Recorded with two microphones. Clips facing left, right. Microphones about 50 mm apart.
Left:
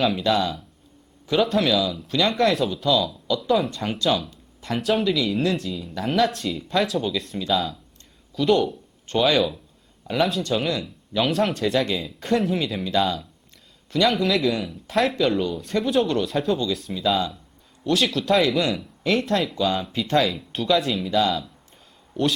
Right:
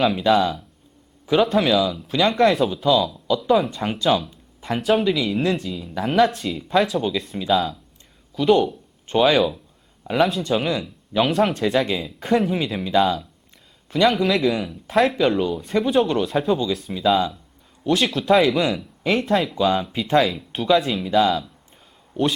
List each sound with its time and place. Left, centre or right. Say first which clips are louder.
0.0 s speech: right 4 dB; centre
9.0 s speech: right 3 dB; centre
10.2 s speech: right 3 dB; centre